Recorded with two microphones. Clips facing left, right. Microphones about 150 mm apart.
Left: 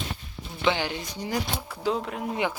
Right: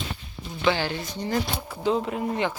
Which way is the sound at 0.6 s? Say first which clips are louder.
Right 2 dB; 15° left (ahead or behind).